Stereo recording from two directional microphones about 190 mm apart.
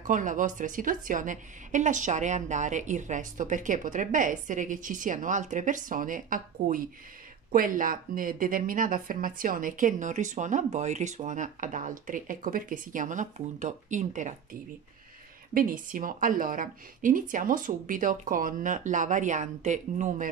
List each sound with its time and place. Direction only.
0.0 s a woman's voice: 45° right (ahead or behind)